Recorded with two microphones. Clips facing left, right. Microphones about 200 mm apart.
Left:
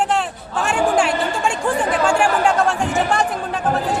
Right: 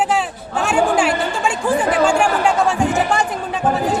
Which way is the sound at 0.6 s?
Centre (ahead or behind).